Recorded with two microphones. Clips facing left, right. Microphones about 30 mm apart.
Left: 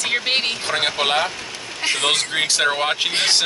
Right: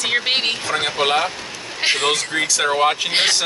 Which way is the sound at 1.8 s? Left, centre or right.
Right.